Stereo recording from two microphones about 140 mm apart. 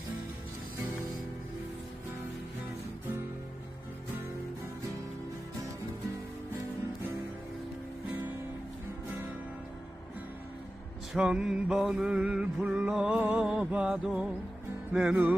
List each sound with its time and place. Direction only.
11.1 s music: 5° right (ahead or behind)